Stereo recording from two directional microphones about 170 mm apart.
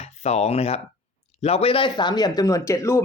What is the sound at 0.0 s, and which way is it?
Speech, 40° left (ahead or behind).